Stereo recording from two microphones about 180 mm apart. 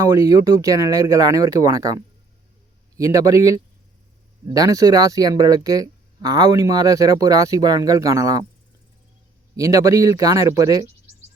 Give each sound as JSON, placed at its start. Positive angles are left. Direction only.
{"t": 0.0, "sound": "speech", "side_deg": -20}
{"t": 9.6, "sound": "speech", "side_deg": -20}